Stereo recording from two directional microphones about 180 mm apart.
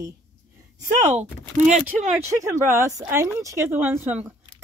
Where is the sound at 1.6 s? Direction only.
5° right (ahead or behind).